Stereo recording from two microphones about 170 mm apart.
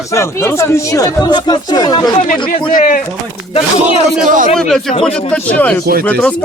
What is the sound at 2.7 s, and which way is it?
Speech, 50° left (ahead or behind).